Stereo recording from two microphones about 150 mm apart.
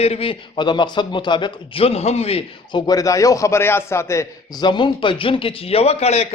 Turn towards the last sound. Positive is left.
turn(degrees=45)  # may be behind; listen again after turning